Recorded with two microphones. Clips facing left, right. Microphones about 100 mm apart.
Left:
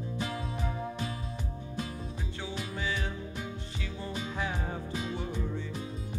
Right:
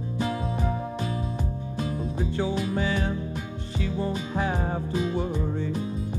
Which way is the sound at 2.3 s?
50° right (ahead or behind).